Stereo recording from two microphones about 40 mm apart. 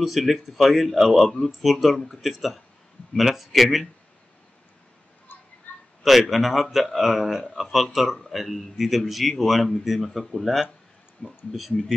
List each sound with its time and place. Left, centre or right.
0.0 s speech: centre
5.3 s a sound: left
5.7 s a sound: left
6.0 s speech: centre
11.2 s speech: centre
11.5 s speech: centre